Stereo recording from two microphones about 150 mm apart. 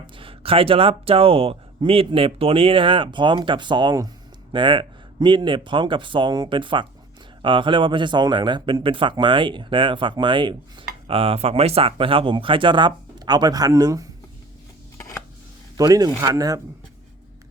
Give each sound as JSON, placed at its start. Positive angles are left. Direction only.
{"t": 0.2, "sound": "speech", "side_deg": -35}
{"t": 14.9, "sound": "scissors", "side_deg": 15}
{"t": 15.8, "sound": "speech", "side_deg": -25}